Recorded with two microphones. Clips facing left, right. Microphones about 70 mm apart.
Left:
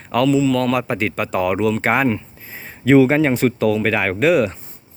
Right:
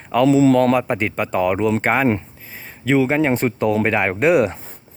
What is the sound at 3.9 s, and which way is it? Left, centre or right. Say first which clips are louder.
Speech: even; centre.